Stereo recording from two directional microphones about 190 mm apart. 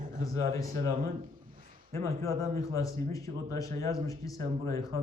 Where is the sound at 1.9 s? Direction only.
15° left (ahead or behind).